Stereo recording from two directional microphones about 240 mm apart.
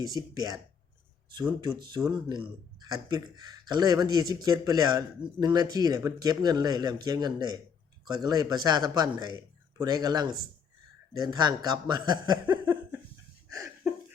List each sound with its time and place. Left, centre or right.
0.0 s a man's voice: centre
2.8 s a man's voice: centre
13.5 s a sound: centre